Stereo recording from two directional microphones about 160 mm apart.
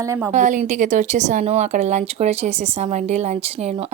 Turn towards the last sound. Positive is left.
turn(degrees=-40)  # may be behind; listen again after turning